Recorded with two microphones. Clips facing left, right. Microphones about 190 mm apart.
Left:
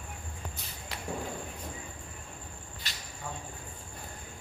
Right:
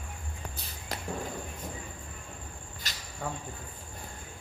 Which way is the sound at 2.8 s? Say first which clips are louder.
Right 2 dB; 45° right (ahead or behind).